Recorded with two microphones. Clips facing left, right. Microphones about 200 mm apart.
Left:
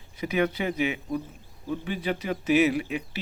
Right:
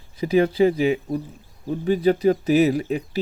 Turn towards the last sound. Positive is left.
turn(degrees=-40)  # may be behind; listen again after turning